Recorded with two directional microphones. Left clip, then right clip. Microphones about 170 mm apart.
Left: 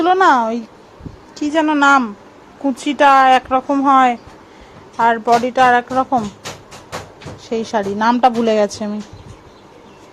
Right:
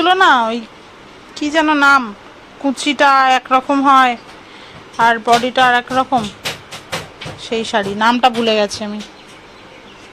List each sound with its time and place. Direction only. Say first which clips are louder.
0.0 s a woman's voice: right 1 dB; 20° left (ahead or behind)
7.5 s a woman's voice: right 1 dB; 15° left (ahead or behind)